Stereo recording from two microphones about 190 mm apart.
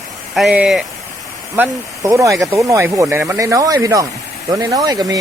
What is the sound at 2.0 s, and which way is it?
Speech, 15° right (ahead or behind).